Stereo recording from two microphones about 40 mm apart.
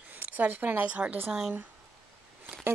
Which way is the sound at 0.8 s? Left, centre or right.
Right.